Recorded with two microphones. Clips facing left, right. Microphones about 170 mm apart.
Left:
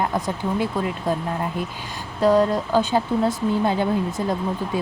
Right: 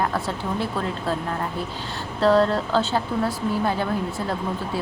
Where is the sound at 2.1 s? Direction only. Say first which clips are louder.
Left 1 dB; 10° left (ahead or behind).